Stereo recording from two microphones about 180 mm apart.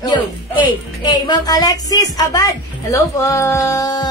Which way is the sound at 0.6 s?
25° left (ahead or behind).